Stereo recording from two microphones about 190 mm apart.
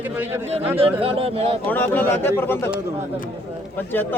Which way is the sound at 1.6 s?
10° left (ahead or behind).